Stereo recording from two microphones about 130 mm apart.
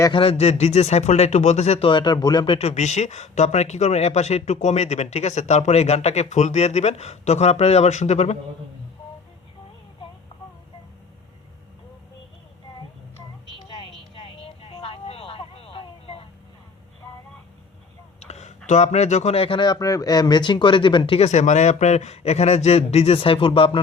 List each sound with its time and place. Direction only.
0.1 s speech: 45° left (ahead or behind)
1.9 s speech: 35° left (ahead or behind)
2.6 s speech: 60° left (ahead or behind)
14.2 s vehicle: 45° left (ahead or behind)
18.2 s speech: 60° left (ahead or behind); by 21.2 s 40° left (ahead or behind)
21.2 s speech: 60° left (ahead or behind); by 23.8 s 45° left (ahead or behind)